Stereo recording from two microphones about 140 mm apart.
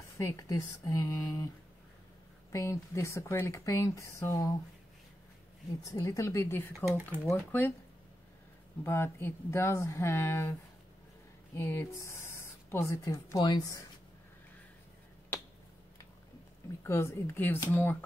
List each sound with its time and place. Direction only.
0.2 s speech: 25° left (ahead or behind)
2.5 s speech: 20° left (ahead or behind)
5.9 s speech: 25° left (ahead or behind)
6.7 s speech: 15° right (ahead or behind)
7.2 s speech: 15° left (ahead or behind)
8.8 s speech: 15° left (ahead or behind)
11.5 s speech: 15° left (ahead or behind)
16.8 s speech: 20° left (ahead or behind)